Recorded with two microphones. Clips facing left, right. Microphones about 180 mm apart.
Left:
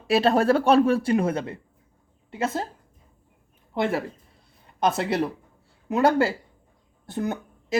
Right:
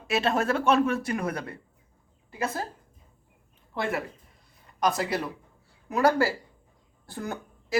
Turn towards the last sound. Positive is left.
turn(degrees=20)  # may be behind; listen again after turning